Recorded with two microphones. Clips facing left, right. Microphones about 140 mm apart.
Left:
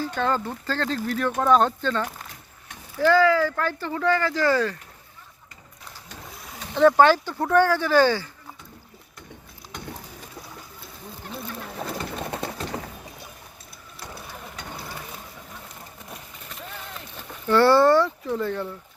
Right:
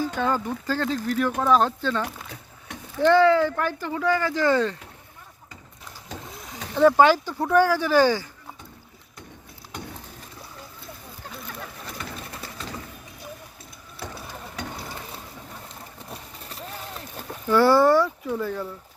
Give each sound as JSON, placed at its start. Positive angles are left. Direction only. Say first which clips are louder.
{"t": 0.0, "sound": "speech", "louder": "even", "side_deg": -10}
{"t": 3.1, "sound": "speech", "louder": "right 1 dB", "side_deg": -25}
{"t": 6.3, "sound": "speech", "louder": "even", "side_deg": 0}
{"t": 12.2, "sound": "a sound", "louder": "left 8 dB", "side_deg": 60}
{"t": 16.1, "sound": "a sound", "louder": "right 2 dB", "side_deg": -35}
{"t": 17.5, "sound": "speech", "louder": "left 1 dB", "side_deg": -10}